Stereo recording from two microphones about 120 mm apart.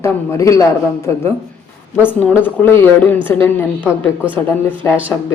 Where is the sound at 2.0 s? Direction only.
15° left (ahead or behind).